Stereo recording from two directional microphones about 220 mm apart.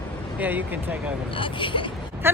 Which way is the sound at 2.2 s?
10° right (ahead or behind).